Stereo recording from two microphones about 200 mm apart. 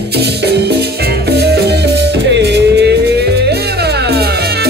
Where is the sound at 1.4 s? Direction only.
55° right (ahead or behind).